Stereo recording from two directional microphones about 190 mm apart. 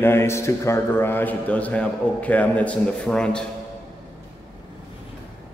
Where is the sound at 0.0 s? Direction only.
15° left (ahead or behind).